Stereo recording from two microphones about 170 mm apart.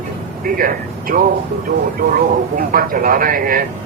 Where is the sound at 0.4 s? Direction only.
55° right (ahead or behind).